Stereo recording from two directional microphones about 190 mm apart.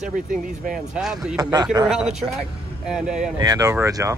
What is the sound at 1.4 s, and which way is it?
Speech, 20° right (ahead or behind).